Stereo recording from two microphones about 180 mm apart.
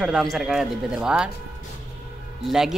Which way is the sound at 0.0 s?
Centre (ahead or behind).